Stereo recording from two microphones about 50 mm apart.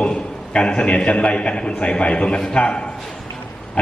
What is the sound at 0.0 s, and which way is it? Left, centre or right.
A man's voice, centre.